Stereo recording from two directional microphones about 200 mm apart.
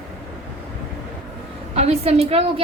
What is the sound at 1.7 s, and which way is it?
Speech, 30° right (ahead or behind).